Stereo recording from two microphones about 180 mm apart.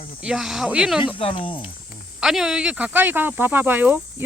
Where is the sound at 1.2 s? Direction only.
30° left (ahead or behind).